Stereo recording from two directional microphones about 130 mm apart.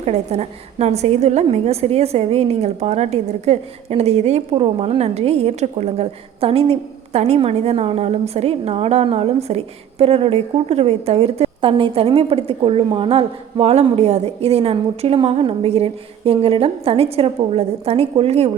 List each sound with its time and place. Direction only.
0.0 s a woman's voice: 55° right (ahead or behind)